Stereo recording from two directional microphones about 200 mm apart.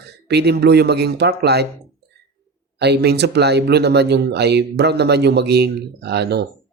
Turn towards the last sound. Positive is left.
turn(degrees=-55)  # may be behind; listen again after turning